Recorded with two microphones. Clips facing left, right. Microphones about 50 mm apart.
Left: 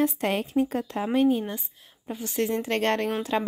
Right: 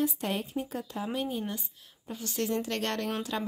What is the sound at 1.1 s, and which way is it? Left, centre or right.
Speech, left.